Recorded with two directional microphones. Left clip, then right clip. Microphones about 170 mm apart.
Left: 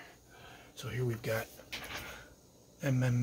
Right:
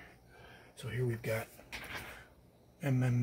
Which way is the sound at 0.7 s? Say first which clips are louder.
Even; 5° right (ahead or behind).